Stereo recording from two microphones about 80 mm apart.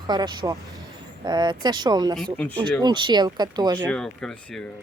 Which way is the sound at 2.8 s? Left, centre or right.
Right.